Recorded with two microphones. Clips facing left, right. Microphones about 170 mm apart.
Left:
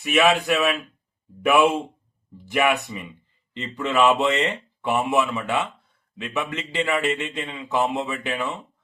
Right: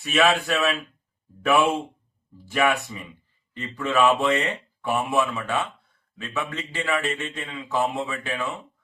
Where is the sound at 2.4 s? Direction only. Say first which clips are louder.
Left 1 dB; 20° left (ahead or behind).